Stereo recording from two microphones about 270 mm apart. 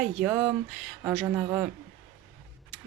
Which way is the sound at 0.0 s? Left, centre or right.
Centre.